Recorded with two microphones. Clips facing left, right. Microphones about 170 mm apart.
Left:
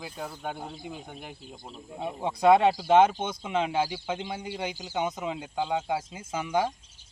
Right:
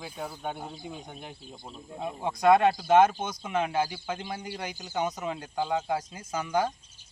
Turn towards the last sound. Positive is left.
turn(degrees=20)  # may be behind; listen again after turning